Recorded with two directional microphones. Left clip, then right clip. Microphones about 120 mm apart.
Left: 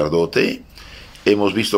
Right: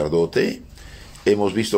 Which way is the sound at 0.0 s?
20° right (ahead or behind).